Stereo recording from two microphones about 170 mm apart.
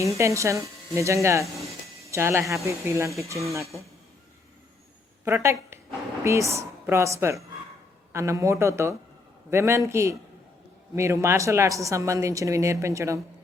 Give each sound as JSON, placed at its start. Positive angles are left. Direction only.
{"t": 0.0, "sound": "a woman's voice", "side_deg": -20}
{"t": 5.2, "sound": "a woman's voice", "side_deg": -15}